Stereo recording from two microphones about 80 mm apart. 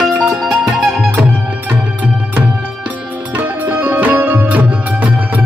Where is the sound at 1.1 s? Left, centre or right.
Right.